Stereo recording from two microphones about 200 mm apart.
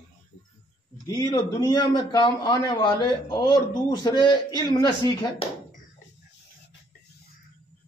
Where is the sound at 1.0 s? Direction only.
20° left (ahead or behind).